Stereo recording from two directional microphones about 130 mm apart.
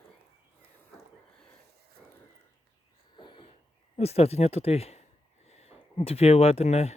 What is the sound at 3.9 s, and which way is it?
Speech, 50° left (ahead or behind).